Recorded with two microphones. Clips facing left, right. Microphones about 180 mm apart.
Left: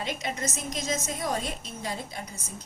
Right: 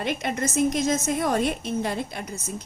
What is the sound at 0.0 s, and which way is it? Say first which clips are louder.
A woman's voice: right 6 dB; 60° right (ahead or behind).